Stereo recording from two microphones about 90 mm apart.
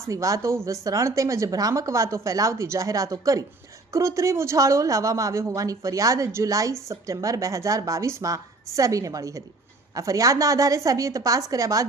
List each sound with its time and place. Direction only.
0.1 s a woman's voice: 40° right (ahead or behind)